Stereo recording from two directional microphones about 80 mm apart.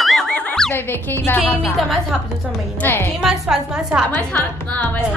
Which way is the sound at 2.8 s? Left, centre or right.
Left.